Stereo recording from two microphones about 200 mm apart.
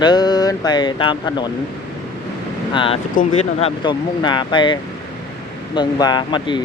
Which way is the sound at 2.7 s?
25° left (ahead or behind).